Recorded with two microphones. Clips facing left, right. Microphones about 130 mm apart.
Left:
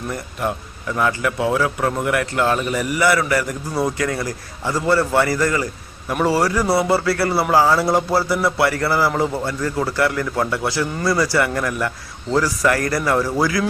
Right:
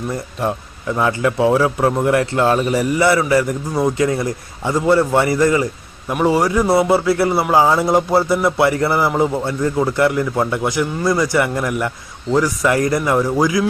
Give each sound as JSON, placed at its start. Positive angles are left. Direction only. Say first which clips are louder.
{"t": 0.1, "sound": "a man's voice", "louder": "right 1 dB", "side_deg": -25}